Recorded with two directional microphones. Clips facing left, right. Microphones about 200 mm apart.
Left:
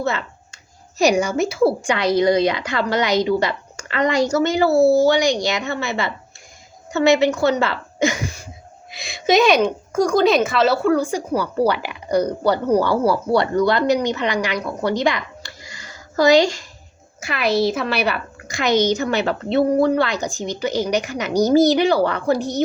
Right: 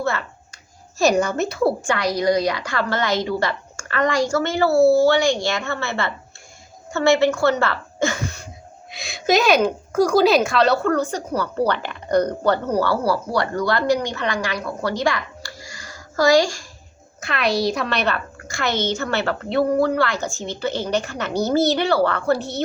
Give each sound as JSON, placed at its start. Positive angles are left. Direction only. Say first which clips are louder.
{"t": 0.0, "sound": "a woman's voice", "louder": "left 1 dB", "side_deg": 20}
{"t": 8.9, "sound": "a woman's voice", "louder": "left 1 dB", "side_deg": 0}
{"t": 17.2, "sound": "a woman's voice", "louder": "left 2 dB", "side_deg": 5}